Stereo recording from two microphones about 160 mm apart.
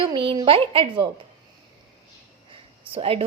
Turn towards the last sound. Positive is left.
turn(degrees=-35)  # may be behind; listen again after turning